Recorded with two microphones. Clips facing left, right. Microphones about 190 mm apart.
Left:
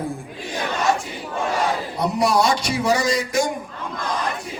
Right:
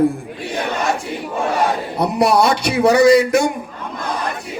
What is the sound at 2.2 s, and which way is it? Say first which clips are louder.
A man's voice: right 4 dB; 65° right (ahead or behind).